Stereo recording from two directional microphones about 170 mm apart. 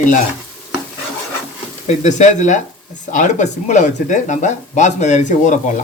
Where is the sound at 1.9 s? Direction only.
40° left (ahead or behind).